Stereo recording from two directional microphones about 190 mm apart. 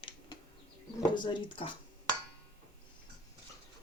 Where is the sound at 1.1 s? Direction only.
25° left (ahead or behind).